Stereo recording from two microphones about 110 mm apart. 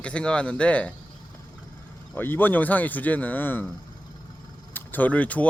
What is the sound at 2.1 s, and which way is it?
Speech, 20° left (ahead or behind).